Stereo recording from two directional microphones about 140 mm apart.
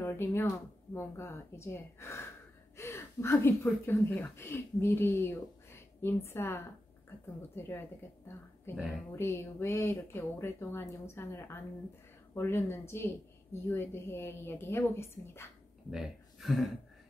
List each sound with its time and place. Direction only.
0.0 s speech: 15° left (ahead or behind)
8.7 s speech: centre (ahead or behind)
9.1 s speech: 15° left (ahead or behind)
15.9 s speech: 5° right (ahead or behind)